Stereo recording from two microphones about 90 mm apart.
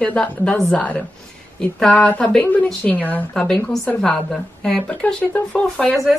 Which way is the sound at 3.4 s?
5° left (ahead or behind).